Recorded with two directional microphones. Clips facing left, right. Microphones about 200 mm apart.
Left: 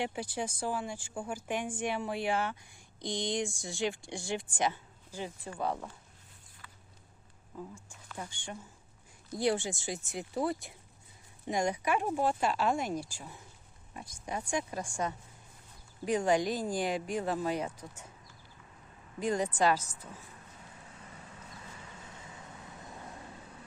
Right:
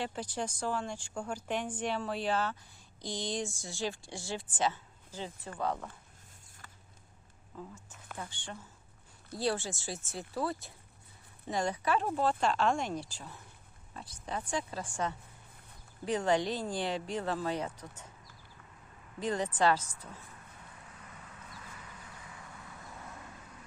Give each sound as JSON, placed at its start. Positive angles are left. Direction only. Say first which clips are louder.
{"t": 0.0, "sound": "speech", "louder": "left 1 dB", "side_deg": 10}
{"t": 6.6, "sound": "a sound", "louder": "left 1 dB", "side_deg": -45}
{"t": 9.3, "sound": "speech", "louder": "left 3 dB", "side_deg": 15}
{"t": 19.2, "sound": "speech", "louder": "left 1 dB", "side_deg": 10}
{"t": 22.0, "sound": "vehicle", "louder": "left 1 dB", "side_deg": 25}